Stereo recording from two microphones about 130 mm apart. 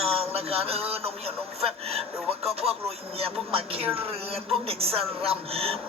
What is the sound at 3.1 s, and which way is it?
A man's voice, 50° right (ahead or behind).